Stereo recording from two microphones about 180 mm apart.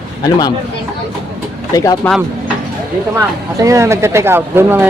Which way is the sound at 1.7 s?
20° left (ahead or behind).